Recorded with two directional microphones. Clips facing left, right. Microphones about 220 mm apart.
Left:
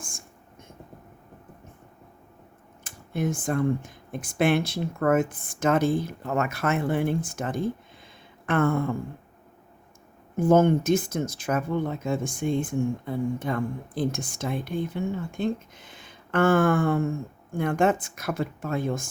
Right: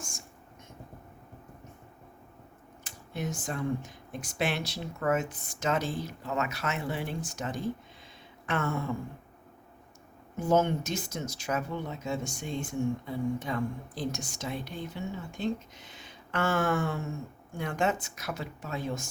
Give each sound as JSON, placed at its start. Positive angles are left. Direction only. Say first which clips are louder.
{"t": 2.8, "sound": "speech", "louder": "left 8 dB", "side_deg": 50}
{"t": 10.3, "sound": "speech", "louder": "left 7 dB", "side_deg": 50}